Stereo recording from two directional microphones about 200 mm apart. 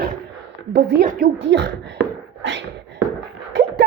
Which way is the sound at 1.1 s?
45° right (ahead or behind).